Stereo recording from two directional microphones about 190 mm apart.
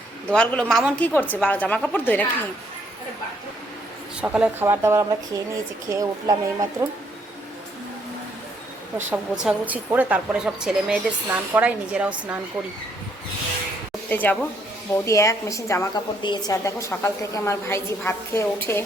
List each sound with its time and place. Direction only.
0.3 s a woman's voice: 5° left (ahead or behind)
4.2 s a woman's voice: 5° right (ahead or behind)
9.0 s a woman's voice: 5° right (ahead or behind)
14.1 s a woman's voice: 10° left (ahead or behind)